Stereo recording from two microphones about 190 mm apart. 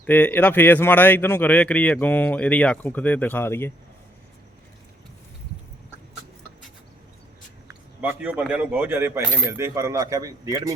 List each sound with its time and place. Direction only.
0.0 s speech: 10° left (ahead or behind)
8.0 s speech: 5° right (ahead or behind)